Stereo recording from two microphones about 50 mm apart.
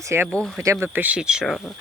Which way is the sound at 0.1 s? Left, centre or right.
Right.